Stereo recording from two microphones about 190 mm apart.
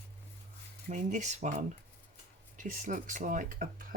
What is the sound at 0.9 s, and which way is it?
Speech, 40° right (ahead or behind).